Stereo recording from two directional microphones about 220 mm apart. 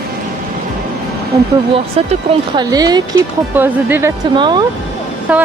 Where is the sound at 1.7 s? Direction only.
25° right (ahead or behind); by 4.1 s 10° right (ahead or behind).